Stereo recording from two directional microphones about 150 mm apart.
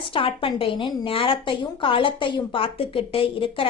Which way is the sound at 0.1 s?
35° left (ahead or behind).